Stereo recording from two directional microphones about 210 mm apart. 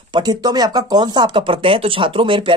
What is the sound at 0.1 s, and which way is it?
Speech, 20° right (ahead or behind).